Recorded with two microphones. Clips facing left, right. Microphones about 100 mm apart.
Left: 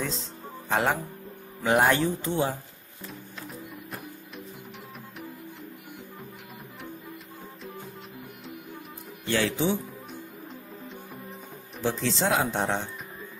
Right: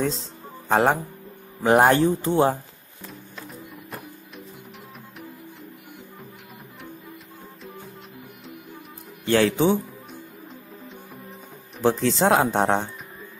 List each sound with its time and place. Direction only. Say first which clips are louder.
0.7 s speech: right 6 dB; 35° right (ahead or behind)
9.3 s speech: right 7 dB; 55° right (ahead or behind)
11.8 s speech: right 7 dB; 50° right (ahead or behind)